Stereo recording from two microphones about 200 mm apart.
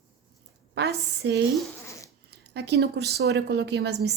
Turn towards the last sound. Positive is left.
turn(degrees=-55)  # may be behind; listen again after turning